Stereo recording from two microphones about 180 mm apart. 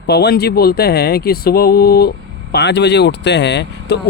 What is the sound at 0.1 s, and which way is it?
Speech, 65° left (ahead or behind).